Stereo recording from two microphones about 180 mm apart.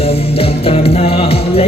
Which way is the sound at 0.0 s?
30° left (ahead or behind).